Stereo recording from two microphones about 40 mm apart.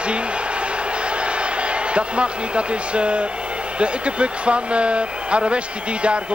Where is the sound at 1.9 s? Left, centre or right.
Right.